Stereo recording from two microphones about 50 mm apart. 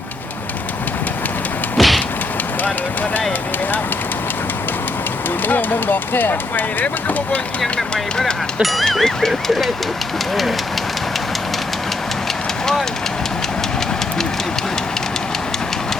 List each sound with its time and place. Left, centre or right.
1.8 s vehicle: centre
5.5 s speech: left
7.6 s a sound: centre